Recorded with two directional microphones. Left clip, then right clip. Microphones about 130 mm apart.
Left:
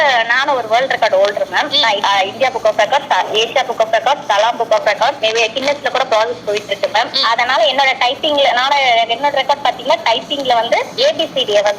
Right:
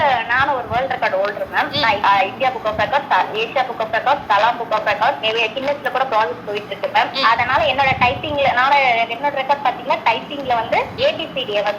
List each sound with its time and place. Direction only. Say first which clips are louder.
0.0 s speech: left 3 dB; 35° left (ahead or behind)